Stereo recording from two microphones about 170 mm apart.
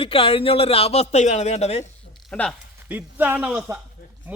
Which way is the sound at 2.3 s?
5° left (ahead or behind).